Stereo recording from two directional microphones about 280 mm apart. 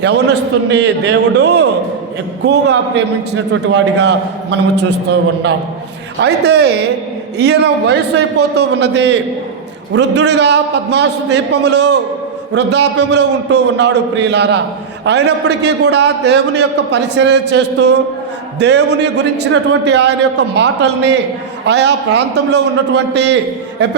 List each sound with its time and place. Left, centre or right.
0.0 s a man's voice: right
6.1 s a man's voice: right